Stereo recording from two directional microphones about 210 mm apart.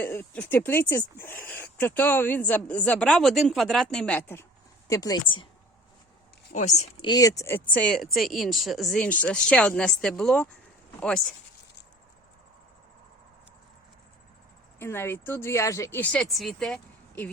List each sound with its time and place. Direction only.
0.0 s speech: 10° left (ahead or behind)
6.5 s speech: 35° left (ahead or behind)
7.1 s speech: 15° left (ahead or behind)
14.8 s speech: 10° left (ahead or behind)